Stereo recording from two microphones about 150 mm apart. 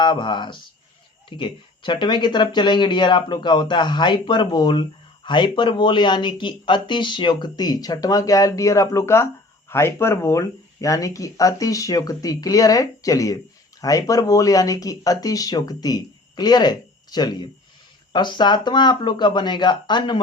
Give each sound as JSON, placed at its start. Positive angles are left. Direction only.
{"t": 0.0, "sound": "speech", "side_deg": 30}